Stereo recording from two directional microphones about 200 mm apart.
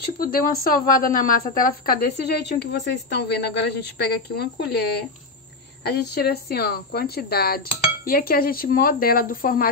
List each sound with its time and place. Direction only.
0.0 s a woman's voice: 45° left (ahead or behind)
5.9 s a woman's voice: 55° left (ahead or behind)